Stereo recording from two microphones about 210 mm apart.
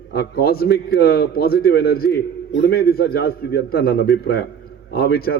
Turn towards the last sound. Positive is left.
turn(degrees=45)  # may be behind; listen again after turning